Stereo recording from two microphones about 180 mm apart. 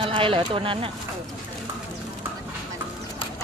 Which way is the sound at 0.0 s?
30° right (ahead or behind).